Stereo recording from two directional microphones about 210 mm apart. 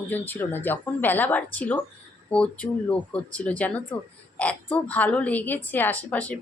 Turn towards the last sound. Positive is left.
turn(degrees=5)  # may be behind; listen again after turning